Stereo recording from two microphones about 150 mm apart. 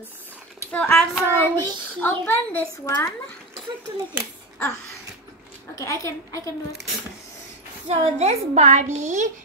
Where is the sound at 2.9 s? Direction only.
25° left (ahead or behind).